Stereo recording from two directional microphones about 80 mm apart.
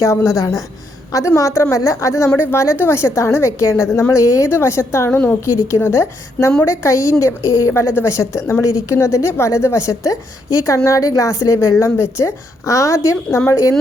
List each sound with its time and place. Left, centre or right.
0.0 s a woman's voice: left
7.7 s a woman's voice: left